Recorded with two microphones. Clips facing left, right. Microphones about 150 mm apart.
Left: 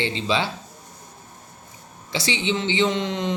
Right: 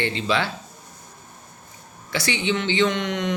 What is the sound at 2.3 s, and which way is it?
Speech, 25° left (ahead or behind).